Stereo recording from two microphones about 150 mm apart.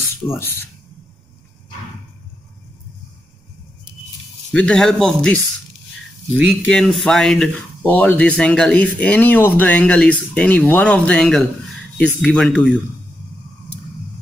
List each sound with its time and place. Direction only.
0.3 s speech: 15° left (ahead or behind)
4.5 s speech: 5° left (ahead or behind)
6.7 s speech: 5° left (ahead or behind)